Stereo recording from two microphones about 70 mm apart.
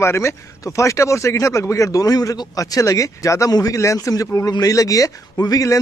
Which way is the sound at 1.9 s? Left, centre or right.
Left.